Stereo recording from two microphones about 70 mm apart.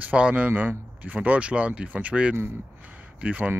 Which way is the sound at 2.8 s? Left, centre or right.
Right.